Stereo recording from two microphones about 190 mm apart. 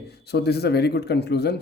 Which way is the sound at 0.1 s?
60° left (ahead or behind).